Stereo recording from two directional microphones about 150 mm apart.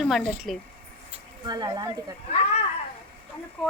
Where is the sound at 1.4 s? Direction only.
30° right (ahead or behind).